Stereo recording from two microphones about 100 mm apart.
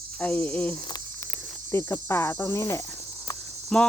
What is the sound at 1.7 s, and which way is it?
Speech, 25° left (ahead or behind).